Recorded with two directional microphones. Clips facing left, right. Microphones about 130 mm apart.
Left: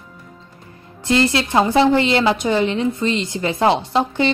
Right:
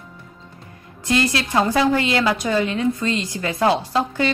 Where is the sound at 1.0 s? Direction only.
25° left (ahead or behind).